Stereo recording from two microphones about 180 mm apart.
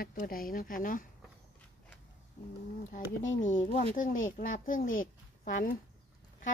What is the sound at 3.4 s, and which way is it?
Speech, 45° left (ahead or behind).